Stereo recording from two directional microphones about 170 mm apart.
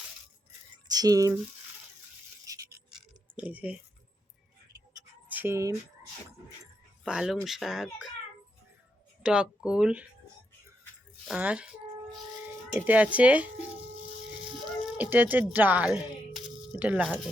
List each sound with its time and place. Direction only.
0.9 s a sound: 20° right (ahead or behind)
2.5 s a sound: 20° right (ahead or behind)
2.9 s a sound: 5° right (ahead or behind)
5.3 s speech: 15° right (ahead or behind)
7.0 s speech: 5° right (ahead or behind)
9.2 s speech: 5° right (ahead or behind)
11.3 s speech: 5° right (ahead or behind)
12.7 s speech: 10° right (ahead or behind)
14.9 s speech: 10° right (ahead or behind)